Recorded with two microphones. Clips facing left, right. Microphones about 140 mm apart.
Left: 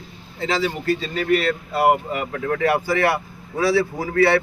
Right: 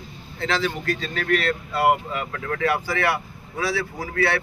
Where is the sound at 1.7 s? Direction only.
35° left (ahead or behind).